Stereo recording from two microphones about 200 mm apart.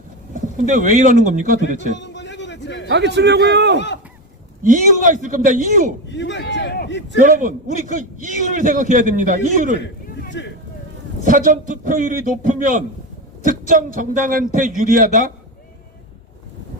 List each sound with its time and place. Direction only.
0.3 s speech: 40° right (ahead or behind)
2.0 s a sound: 65° left (ahead or behind)
2.9 s a man's voice: 60° right (ahead or behind)
3.8 s a sound: 60° left (ahead or behind)
4.6 s speech: 40° right (ahead or behind)
6.1 s a man's voice: 65° left (ahead or behind)
7.3 s speech: 40° right (ahead or behind)
10.4 s vehicle: 60° left (ahead or behind)
11.3 s speech: 40° right (ahead or behind)